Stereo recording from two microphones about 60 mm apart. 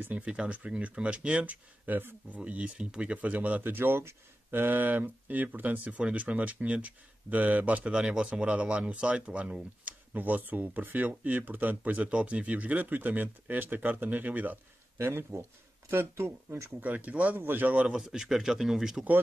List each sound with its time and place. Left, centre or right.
0.0 s speech: right
15.0 s speech: right
16.8 s speech: right
17.9 s a man's voice: centre